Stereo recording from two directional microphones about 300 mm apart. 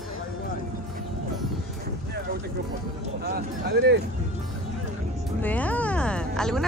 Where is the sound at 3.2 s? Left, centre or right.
Right.